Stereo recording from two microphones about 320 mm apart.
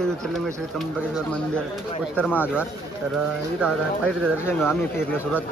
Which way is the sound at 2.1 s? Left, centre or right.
Centre.